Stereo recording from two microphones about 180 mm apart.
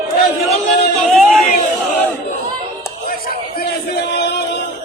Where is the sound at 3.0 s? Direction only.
55° left (ahead or behind).